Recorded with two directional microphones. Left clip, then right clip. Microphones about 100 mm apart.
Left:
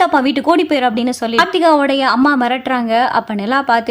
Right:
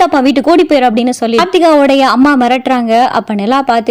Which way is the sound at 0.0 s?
35° right (ahead or behind).